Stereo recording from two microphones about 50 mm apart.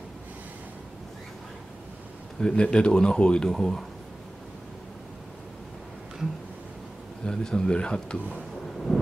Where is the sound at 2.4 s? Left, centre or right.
Centre.